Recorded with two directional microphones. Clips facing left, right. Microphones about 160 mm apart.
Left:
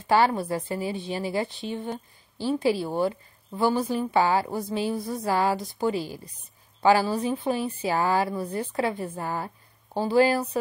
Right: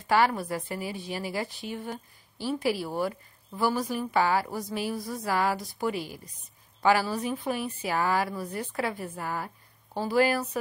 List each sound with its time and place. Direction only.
0.0 s a woman's voice: 30° left (ahead or behind)